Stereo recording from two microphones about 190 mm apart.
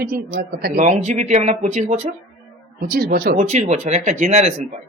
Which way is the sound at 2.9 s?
55° right (ahead or behind).